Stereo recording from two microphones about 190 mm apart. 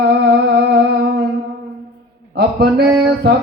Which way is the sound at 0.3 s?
60° right (ahead or behind).